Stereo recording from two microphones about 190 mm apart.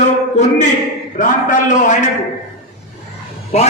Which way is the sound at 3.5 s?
35° left (ahead or behind).